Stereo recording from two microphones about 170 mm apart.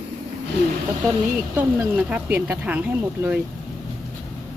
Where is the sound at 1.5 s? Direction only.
10° right (ahead or behind).